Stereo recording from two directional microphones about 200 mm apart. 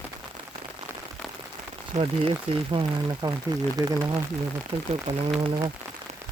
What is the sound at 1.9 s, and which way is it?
Speech, 30° right (ahead or behind).